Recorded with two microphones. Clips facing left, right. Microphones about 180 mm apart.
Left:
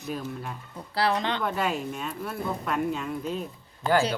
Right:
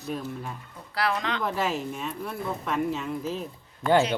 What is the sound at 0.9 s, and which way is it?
Speech, 30° left (ahead or behind).